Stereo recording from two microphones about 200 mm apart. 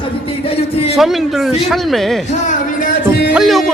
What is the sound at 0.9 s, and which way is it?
Speech, centre (ahead or behind).